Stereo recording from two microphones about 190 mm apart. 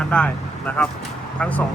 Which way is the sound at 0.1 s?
5° left (ahead or behind).